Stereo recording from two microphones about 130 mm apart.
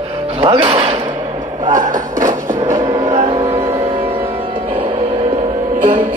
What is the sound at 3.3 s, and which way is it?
Music, 50° right (ahead or behind).